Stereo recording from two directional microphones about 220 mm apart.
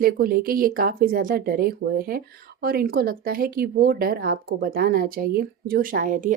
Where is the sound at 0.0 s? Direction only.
40° right (ahead or behind).